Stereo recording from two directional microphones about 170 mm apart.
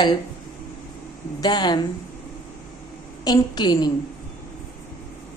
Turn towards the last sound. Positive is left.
turn(degrees=25)  # may be behind; listen again after turning